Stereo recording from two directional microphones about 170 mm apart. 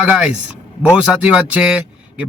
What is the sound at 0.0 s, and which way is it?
A man's voice, 5° right (ahead or behind).